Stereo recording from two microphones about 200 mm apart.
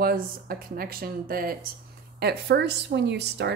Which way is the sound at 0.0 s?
50° right (ahead or behind).